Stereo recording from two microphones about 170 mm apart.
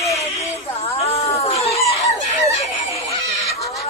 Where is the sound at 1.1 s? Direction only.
35° left (ahead or behind).